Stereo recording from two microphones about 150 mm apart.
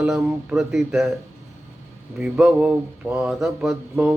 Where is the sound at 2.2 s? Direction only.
10° right (ahead or behind).